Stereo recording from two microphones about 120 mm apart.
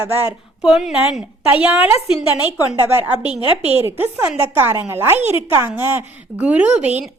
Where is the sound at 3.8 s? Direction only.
15° right (ahead or behind).